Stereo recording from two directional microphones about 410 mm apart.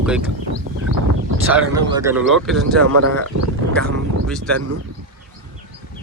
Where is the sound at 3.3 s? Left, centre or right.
Right.